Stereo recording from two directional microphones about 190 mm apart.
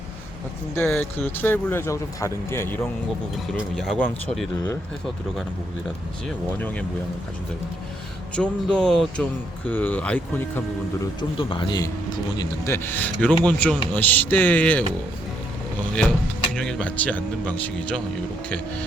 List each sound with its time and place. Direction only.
0.8 s a man's voice: 10° left (ahead or behind)
3.8 s speech: 5° left (ahead or behind)
6.2 s a man's voice: 5° left (ahead or behind)
8.4 s a man's voice: 5° left (ahead or behind)
11.0 s speech: 25° left (ahead or behind)
12.4 s a man's voice: 15° left (ahead or behind)
16.6 s a man's voice: 5° left (ahead or behind)